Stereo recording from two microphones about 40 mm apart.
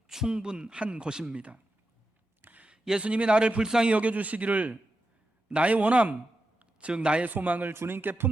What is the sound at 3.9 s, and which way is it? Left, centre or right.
Speech, right.